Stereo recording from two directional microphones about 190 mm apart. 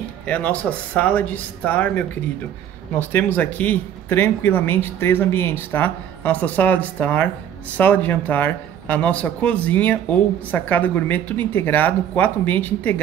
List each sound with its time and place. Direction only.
0.3 s speech: 10° left (ahead or behind)